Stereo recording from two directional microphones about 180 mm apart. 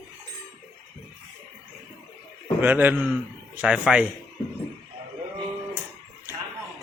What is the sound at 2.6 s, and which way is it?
A man's voice, 10° right (ahead or behind).